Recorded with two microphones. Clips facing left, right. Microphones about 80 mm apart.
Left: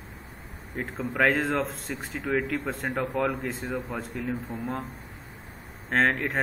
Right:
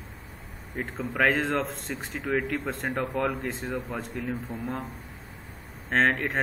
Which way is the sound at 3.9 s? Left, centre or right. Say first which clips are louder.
Even; centre.